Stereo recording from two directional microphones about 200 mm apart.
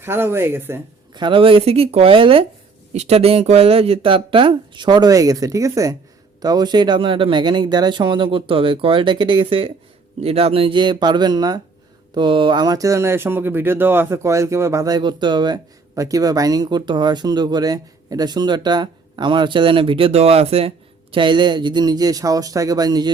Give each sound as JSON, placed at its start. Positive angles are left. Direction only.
{"t": 0.0, "sound": "speech", "side_deg": -10}
{"t": 1.1, "sound": "speech", "side_deg": -25}